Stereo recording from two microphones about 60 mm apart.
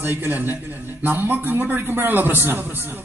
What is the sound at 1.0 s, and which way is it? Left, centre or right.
A woman's voice, right.